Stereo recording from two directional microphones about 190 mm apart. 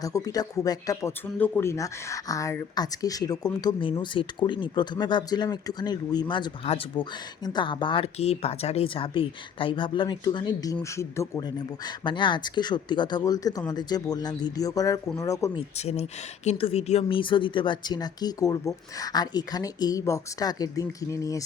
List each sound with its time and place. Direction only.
0.0 s speech: 20° left (ahead or behind)
15.5 s speech: 35° left (ahead or behind); by 21.4 s 15° left (ahead or behind)